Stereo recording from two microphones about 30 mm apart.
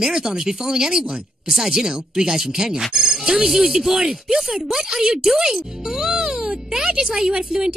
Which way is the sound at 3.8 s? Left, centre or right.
Centre.